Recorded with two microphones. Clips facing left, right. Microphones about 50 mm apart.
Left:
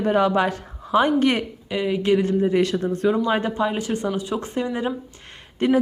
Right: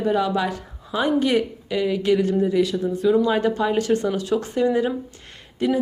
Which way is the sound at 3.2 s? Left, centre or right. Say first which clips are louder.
Right 1 dB; left.